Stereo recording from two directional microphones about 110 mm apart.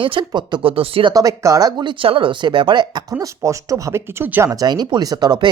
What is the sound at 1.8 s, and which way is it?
Speech, 50° right (ahead or behind).